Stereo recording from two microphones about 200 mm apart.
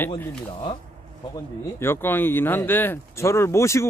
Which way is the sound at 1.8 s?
10° left (ahead or behind).